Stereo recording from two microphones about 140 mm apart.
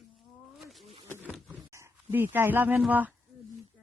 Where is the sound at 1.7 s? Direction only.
20° right (ahead or behind).